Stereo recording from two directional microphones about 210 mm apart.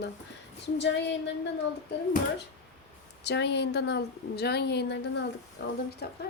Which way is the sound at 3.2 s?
55° left (ahead or behind).